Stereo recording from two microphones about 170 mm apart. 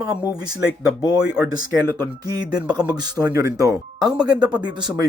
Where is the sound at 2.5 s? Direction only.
25° right (ahead or behind).